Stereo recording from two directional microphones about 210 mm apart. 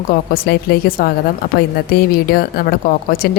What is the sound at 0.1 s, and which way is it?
A woman's voice, 45° left (ahead or behind).